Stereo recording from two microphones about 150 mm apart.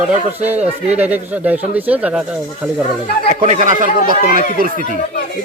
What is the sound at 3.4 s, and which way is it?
Speech, 50° right (ahead or behind).